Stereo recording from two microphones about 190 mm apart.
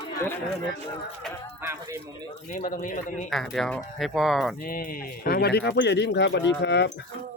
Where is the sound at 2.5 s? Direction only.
45° left (ahead or behind).